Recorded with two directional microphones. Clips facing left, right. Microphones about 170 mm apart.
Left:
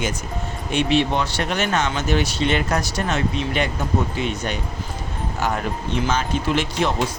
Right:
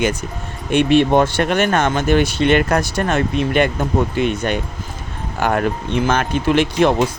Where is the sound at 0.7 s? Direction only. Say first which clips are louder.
Right 7 dB; 55° right (ahead or behind).